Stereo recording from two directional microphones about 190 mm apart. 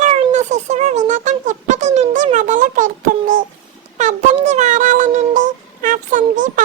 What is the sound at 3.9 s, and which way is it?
Music, 40° right (ahead or behind).